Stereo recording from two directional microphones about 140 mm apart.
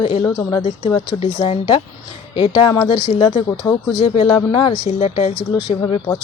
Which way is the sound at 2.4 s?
35° left (ahead or behind).